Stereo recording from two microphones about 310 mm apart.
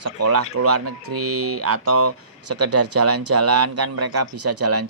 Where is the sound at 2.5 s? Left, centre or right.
Right.